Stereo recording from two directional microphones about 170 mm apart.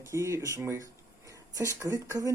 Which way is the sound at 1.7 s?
15° right (ahead or behind).